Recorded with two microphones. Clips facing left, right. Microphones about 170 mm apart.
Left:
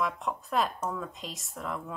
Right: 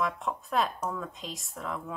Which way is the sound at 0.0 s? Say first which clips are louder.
Even; centre (ahead or behind).